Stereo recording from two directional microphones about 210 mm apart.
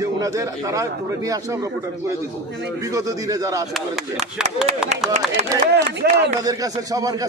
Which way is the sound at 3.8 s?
Centre (ahead or behind).